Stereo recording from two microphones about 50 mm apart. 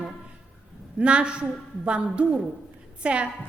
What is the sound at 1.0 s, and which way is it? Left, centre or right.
A woman's voice, right.